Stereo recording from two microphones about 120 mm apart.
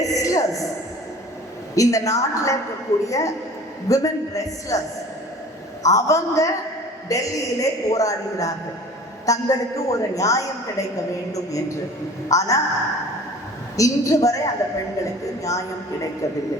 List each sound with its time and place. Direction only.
0.0 s a sound: 30° left (ahead or behind)
1.7 s a woman's voice: 30° left (ahead or behind)
5.8 s a woman's voice: 30° left (ahead or behind)
13.7 s a woman's voice: 25° left (ahead or behind)